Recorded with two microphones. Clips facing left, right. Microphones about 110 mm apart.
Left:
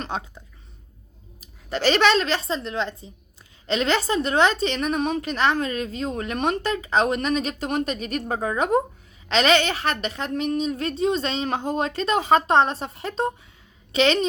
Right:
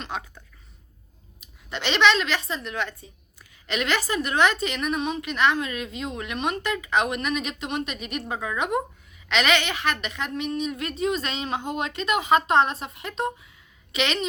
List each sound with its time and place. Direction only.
0.1 s speech: 30° left (ahead or behind)
1.4 s a woman's voice: 40° left (ahead or behind)